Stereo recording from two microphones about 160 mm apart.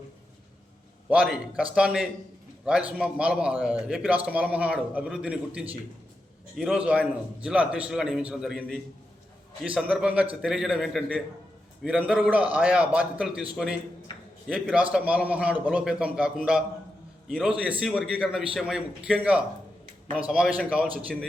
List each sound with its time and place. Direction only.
1.1 s a man's voice: 5° right (ahead or behind)
14.4 s a man's voice: 5° right (ahead or behind)